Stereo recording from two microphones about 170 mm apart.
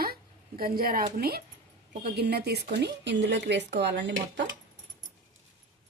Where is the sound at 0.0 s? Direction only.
60° right (ahead or behind).